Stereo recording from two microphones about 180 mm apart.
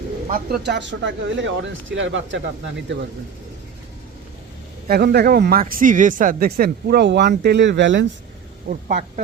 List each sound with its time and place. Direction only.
0.3 s speech: 55° right (ahead or behind); by 2.4 s 90° right
4.9 s speech: 60° right (ahead or behind); by 8.0 s 85° right
8.7 s speech: 45° right (ahead or behind)